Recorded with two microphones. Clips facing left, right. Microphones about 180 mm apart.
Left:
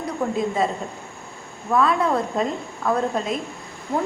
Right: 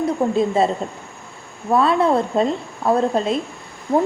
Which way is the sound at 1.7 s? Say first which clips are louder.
Right 4 dB; 30° right (ahead or behind).